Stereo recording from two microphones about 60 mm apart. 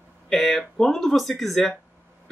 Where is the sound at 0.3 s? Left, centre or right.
Centre.